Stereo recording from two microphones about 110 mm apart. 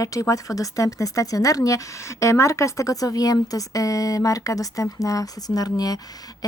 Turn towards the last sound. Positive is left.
turn(degrees=35)  # may be behind; listen again after turning